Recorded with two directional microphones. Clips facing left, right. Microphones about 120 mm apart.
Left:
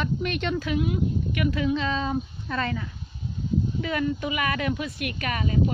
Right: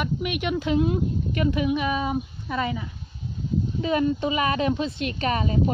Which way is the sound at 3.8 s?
25° right (ahead or behind).